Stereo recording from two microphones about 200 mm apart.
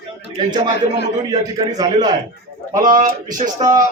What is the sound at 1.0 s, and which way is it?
A man's voice, 20° right (ahead or behind).